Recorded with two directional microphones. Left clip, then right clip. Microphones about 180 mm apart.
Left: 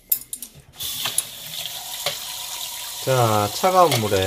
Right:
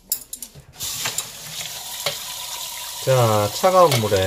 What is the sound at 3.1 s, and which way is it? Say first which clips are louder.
Speech: right 1 dB; 15° left (ahead or behind).